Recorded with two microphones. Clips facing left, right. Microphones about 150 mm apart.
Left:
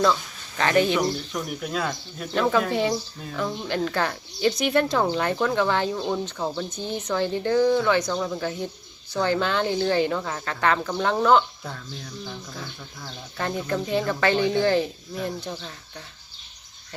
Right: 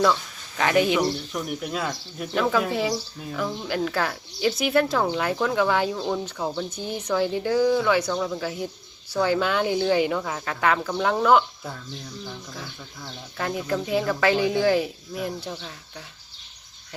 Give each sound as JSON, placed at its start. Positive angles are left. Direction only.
{"t": 0.0, "sound": "speech", "side_deg": -5}